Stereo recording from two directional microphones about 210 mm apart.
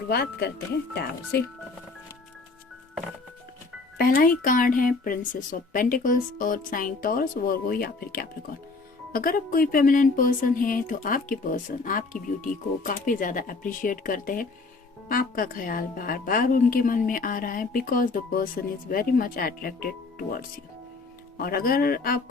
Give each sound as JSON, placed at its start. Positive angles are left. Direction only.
{"t": 0.1, "sound": "a woman's voice", "side_deg": 50}
{"t": 3.9, "sound": "a woman's voice", "side_deg": 45}